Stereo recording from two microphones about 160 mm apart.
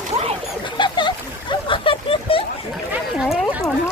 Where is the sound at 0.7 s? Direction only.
30° left (ahead or behind).